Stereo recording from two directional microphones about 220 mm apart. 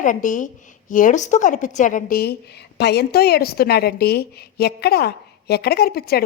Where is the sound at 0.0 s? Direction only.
35° left (ahead or behind).